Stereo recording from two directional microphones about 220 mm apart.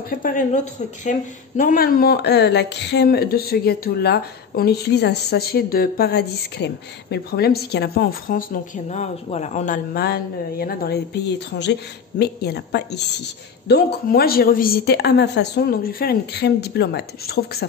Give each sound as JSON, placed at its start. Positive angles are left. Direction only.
{"t": 0.1, "sound": "speech", "side_deg": 40}